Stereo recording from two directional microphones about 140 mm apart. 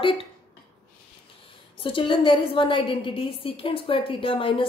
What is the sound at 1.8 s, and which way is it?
A woman's voice, 35° left (ahead or behind).